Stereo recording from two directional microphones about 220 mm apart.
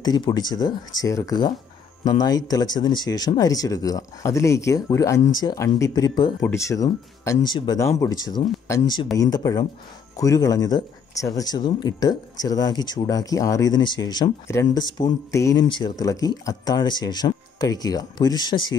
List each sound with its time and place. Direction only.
0.0 s speech: 20° left (ahead or behind)